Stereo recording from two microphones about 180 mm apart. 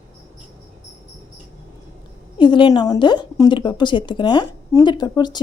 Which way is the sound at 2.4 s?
25° left (ahead or behind).